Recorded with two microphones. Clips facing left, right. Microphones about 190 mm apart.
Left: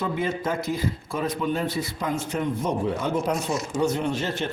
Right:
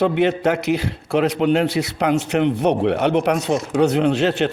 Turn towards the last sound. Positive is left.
turn(degrees=-75)  # may be behind; listen again after turning